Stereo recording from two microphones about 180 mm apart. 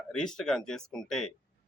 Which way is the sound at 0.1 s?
5° left (ahead or behind).